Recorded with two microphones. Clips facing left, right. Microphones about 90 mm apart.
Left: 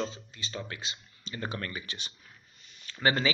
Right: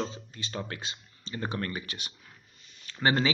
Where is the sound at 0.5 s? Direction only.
40° right (ahead or behind).